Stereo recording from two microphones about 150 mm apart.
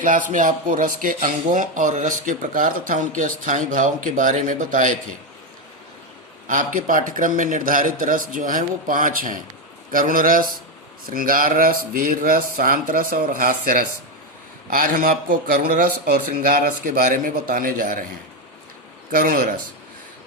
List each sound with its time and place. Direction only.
0.0 s speech: 60° right (ahead or behind)
6.5 s speech: 60° right (ahead or behind)
15.6 s speech: 75° right (ahead or behind)
19.1 s speech: 65° right (ahead or behind)